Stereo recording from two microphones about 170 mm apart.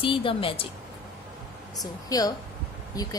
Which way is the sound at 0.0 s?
30° left (ahead or behind).